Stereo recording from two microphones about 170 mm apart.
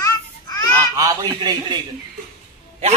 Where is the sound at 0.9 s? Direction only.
20° right (ahead or behind).